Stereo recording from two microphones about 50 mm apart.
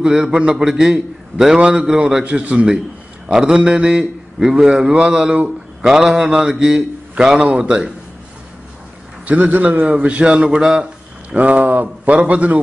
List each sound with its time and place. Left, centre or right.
0.0 s a man's voice: centre
0.3 s a man's voice: right
9.2 s a man's voice: right
9.9 s a man's voice: right
11.2 s a man's voice: right